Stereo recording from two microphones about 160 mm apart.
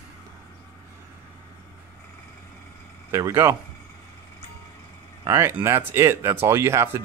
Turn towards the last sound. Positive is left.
turn(degrees=-15)  # may be behind; listen again after turning